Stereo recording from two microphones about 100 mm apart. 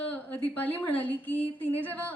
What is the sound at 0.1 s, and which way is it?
A woman's voice, 15° left (ahead or behind).